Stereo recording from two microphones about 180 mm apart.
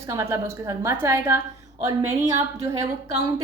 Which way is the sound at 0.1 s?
15° right (ahead or behind).